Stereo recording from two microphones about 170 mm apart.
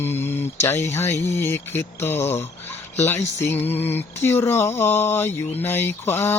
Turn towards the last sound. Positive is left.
turn(degrees=15)  # may be behind; listen again after turning